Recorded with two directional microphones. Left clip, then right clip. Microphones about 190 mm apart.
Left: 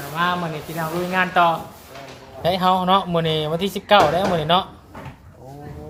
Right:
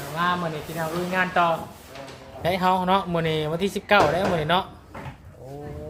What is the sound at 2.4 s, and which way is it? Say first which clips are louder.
Speech: left 4 dB; 5° left (ahead or behind).